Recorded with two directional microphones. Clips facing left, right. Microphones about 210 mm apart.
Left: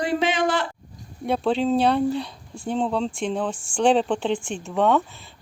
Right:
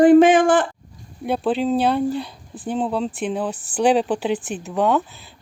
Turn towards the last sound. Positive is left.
turn(degrees=0)  # may be behind; listen again after turning